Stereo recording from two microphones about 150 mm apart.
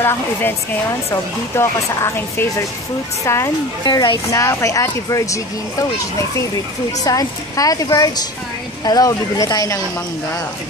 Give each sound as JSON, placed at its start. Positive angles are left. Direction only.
{"t": 0.0, "sound": "speech", "side_deg": 15}